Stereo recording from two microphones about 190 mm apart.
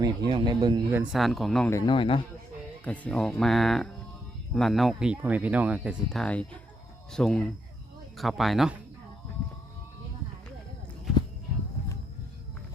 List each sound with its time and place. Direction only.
0.3 s a man's voice: 25° right (ahead or behind)
0.9 s speech: centre (ahead or behind)
1.7 s speech: 25° left (ahead or behind)
2.8 s speech: 5° left (ahead or behind)